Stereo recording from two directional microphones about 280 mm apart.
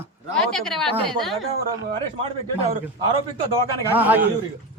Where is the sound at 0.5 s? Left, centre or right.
Centre.